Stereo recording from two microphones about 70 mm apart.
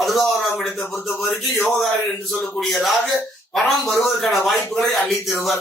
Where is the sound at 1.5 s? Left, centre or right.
Centre.